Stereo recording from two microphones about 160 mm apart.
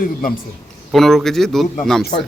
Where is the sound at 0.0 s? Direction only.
60° left (ahead or behind).